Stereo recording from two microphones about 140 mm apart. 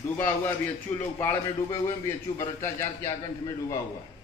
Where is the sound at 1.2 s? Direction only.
15° left (ahead or behind).